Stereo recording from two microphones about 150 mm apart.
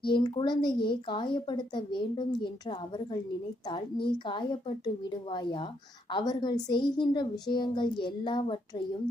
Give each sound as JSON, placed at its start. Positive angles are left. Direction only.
{"t": 0.1, "sound": "speech", "side_deg": 30}